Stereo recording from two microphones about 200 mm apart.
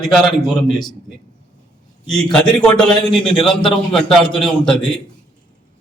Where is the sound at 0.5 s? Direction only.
Centre (ahead or behind).